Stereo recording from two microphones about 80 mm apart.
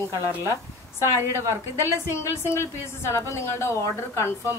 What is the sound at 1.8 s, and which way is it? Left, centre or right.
A woman's voice, left.